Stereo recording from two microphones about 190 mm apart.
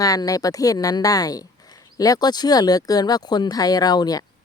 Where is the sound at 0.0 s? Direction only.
20° left (ahead or behind).